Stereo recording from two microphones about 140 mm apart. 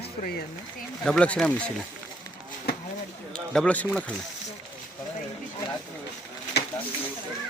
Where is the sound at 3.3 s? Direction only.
5° left (ahead or behind).